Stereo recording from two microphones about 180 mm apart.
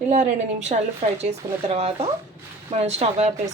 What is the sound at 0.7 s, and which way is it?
A woman's voice, 45° right (ahead or behind).